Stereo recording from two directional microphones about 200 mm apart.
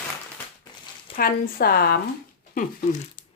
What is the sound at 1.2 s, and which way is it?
Speech, 50° left (ahead or behind).